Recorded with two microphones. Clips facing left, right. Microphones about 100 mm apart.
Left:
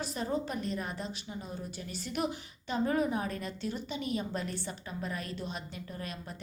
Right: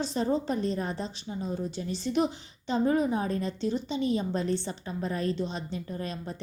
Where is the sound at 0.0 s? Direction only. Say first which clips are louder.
Right 6 dB; 30° right (ahead or behind).